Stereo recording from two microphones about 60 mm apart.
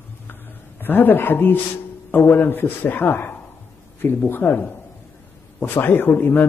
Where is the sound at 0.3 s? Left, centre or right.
Left.